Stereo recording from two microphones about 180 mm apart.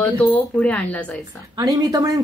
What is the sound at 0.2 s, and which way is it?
Speech, 5° left (ahead or behind).